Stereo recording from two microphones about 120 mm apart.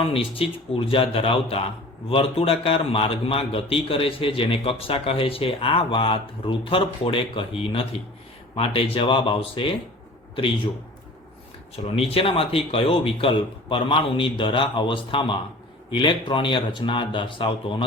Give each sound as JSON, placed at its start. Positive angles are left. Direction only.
{"t": 0.0, "sound": "a man's voice", "side_deg": 50}
{"t": 11.8, "sound": "a man's voice", "side_deg": 50}